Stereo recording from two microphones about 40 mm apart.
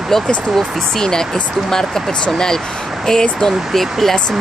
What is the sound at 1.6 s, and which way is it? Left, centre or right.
Speech, centre.